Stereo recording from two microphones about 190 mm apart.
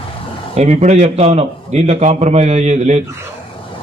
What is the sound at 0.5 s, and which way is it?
A man's voice, 35° right (ahead or behind).